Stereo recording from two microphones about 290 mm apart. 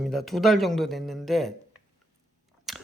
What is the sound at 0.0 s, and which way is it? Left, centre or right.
Speech, centre.